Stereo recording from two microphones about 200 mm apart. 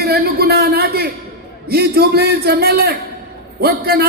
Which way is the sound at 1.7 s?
55° right (ahead or behind).